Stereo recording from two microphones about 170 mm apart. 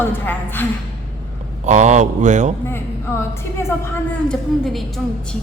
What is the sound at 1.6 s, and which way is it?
Speech, 45° right (ahead or behind).